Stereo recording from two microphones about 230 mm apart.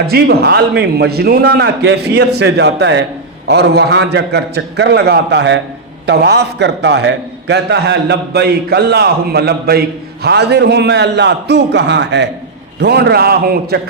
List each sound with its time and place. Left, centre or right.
0.1 s a man's voice: right